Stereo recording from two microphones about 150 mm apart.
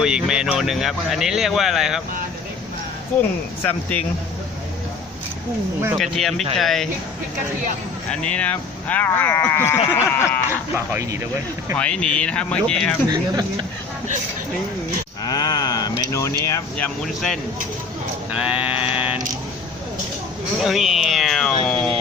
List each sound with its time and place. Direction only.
0.0 s speech: 5° right (ahead or behind)
3.6 s speech: 10° left (ahead or behind)
6.0 s speech: centre (ahead or behind)
8.1 s speech: 5° left (ahead or behind)
10.8 s speech: 20° right (ahead or behind)
11.8 s speech: 5° left (ahead or behind)
13.1 s speech: 25° right (ahead or behind)
15.2 s speech: 25° left (ahead or behind)
16.7 s speech: 5° left (ahead or behind)
18.3 s a sound: 10° right (ahead or behind)
18.7 s a sound: 40° left (ahead or behind)
20.6 s speech: centre (ahead or behind)